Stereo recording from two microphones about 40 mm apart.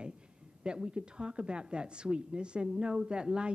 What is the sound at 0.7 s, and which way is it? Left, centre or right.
A woman's voice, right.